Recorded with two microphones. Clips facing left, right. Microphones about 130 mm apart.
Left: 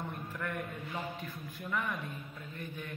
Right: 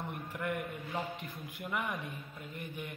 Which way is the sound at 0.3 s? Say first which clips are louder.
Right 4 dB; 15° right (ahead or behind).